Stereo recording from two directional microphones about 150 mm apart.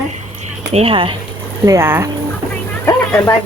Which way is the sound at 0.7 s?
40° right (ahead or behind).